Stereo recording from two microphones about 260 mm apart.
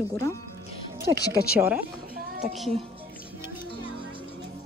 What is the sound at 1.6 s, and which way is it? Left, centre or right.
A woman's voice, centre.